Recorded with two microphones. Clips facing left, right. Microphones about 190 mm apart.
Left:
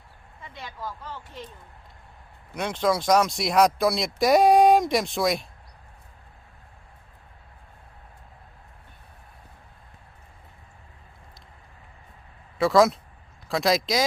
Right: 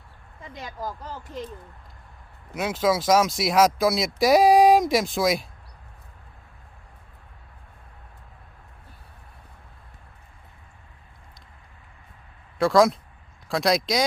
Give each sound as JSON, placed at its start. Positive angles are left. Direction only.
{"t": 0.4, "sound": "speech", "side_deg": -40}
{"t": 2.6, "sound": "speech", "side_deg": -5}
{"t": 12.5, "sound": "speech", "side_deg": 0}